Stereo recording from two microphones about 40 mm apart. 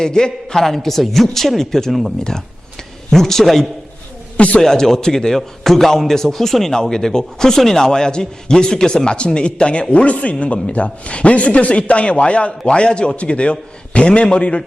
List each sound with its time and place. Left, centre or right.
0.0 s a man's voice: centre
0.6 s a man's voice: centre
1.9 s a man's voice: centre
3.1 s a man's voice: centre
4.4 s a man's voice: left
4.6 s a man's voice: centre; by 14.6 s left